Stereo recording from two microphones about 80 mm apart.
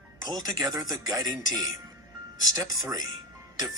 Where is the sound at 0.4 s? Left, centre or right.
Right.